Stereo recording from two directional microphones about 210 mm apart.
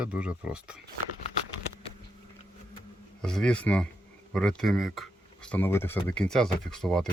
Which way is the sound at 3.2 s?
5° left (ahead or behind).